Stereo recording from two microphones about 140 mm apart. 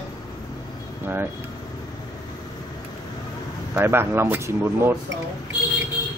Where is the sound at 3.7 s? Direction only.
15° right (ahead or behind).